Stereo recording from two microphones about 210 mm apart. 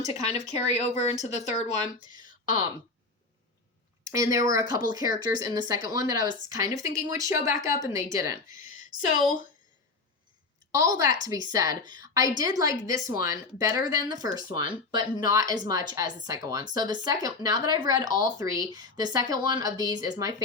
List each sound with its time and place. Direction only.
0.3 s speech: 30° left (ahead or behind)
1.8 s speech: 20° right (ahead or behind)
4.0 s speech: 15° right (ahead or behind)
10.7 s a woman's voice: 15° right (ahead or behind)